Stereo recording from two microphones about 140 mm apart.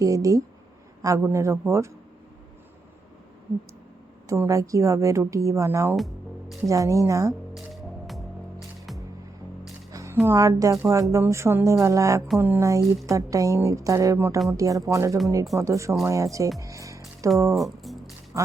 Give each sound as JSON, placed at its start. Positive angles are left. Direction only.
{"t": 0.0, "sound": "a woman's voice", "side_deg": -25}
{"t": 4.3, "sound": "a woman's voice", "side_deg": -20}
{"t": 6.0, "sound": "music", "side_deg": 0}
{"t": 6.7, "sound": "a woman's voice", "side_deg": -20}
{"t": 7.5, "sound": "music", "side_deg": 0}
{"t": 9.9, "sound": "music", "side_deg": -20}
{"t": 10.2, "sound": "a woman's voice", "side_deg": -25}
{"t": 16.6, "sound": "music", "side_deg": -25}
{"t": 17.5, "sound": "music", "side_deg": 0}
{"t": 18.3, "sound": "speech", "side_deg": -20}